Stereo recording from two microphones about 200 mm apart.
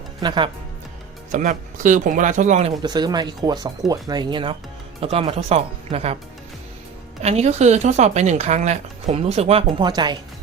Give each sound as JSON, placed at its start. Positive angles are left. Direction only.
{"t": 0.2, "sound": "speech", "side_deg": -20}
{"t": 1.3, "sound": "speech", "side_deg": -40}
{"t": 2.8, "sound": "speech", "side_deg": -20}
{"t": 7.2, "sound": "speech", "side_deg": -30}